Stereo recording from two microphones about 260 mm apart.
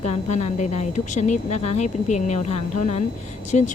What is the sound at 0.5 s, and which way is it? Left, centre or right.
A woman's voice, left.